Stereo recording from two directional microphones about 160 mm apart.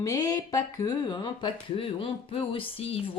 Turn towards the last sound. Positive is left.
turn(degrees=35)  # may be behind; listen again after turning